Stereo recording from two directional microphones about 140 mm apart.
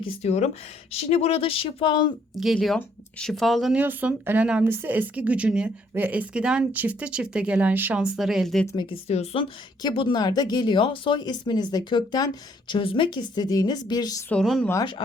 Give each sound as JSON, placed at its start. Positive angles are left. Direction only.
{"t": 0.0, "sound": "a woman's voice", "side_deg": 50}
{"t": 2.4, "sound": "speech", "side_deg": 0}
{"t": 8.7, "sound": "a woman's voice", "side_deg": 35}
{"t": 9.0, "sound": "a woman's voice", "side_deg": 50}
{"t": 14.3, "sound": "speech", "side_deg": 5}